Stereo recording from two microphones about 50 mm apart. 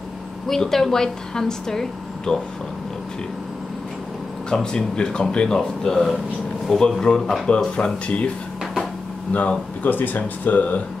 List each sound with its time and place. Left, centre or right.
0.5 s speech: centre
4.5 s speech: centre
7.4 s speech: left
9.3 s speech: left